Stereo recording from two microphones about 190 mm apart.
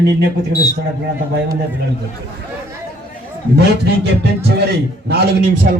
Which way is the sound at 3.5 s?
60° right (ahead or behind).